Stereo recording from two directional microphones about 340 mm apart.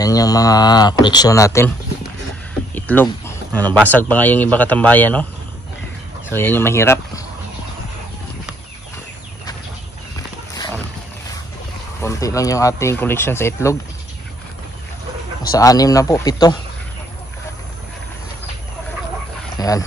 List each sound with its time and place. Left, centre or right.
0.0 s speech: centre
2.7 s speech: centre
6.3 s speech: centre
10.1 s horse: centre
12.0 s speech: centre
15.5 s speech: centre
19.5 s dog: centre